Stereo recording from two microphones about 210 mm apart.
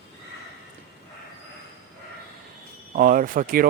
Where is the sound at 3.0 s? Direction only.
40° right (ahead or behind).